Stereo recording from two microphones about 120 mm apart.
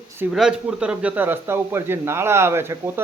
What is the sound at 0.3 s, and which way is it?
A man's voice, 5° right (ahead or behind).